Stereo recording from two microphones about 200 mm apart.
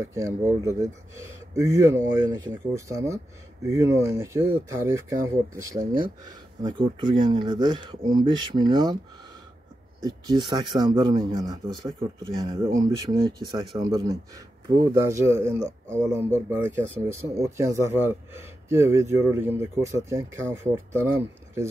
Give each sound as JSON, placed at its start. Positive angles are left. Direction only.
{"t": 0.0, "sound": "speech", "side_deg": -15}
{"t": 10.0, "sound": "speech", "side_deg": -20}